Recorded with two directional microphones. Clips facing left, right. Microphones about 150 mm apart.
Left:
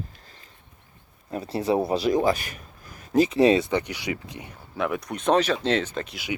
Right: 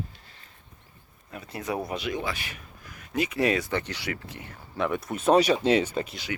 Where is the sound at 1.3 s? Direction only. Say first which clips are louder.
Left 8 dB; 35° left (ahead or behind); by 4.5 s 15° left (ahead or behind).